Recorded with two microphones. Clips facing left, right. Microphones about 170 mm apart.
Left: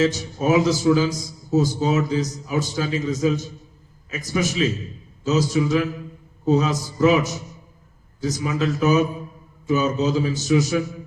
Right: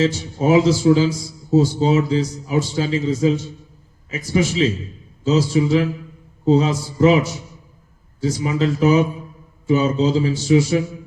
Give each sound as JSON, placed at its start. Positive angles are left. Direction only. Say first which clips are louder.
{"t": 0.0, "sound": "a man's voice", "louder": "right 2 dB", "side_deg": -30}